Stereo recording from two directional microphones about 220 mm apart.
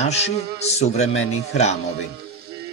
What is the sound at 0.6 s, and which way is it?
Speech, 30° left (ahead or behind).